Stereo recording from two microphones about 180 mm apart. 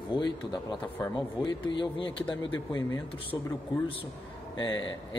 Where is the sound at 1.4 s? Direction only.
25° left (ahead or behind).